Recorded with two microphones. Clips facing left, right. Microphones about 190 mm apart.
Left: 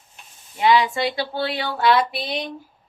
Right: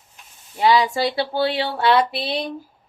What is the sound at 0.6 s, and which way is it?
Speech, 35° right (ahead or behind).